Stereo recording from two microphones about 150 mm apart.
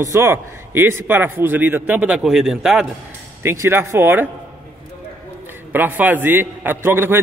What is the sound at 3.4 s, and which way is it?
Speech, 15° right (ahead or behind).